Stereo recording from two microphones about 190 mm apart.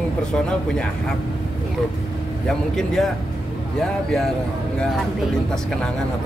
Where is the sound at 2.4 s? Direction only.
Centre (ahead or behind).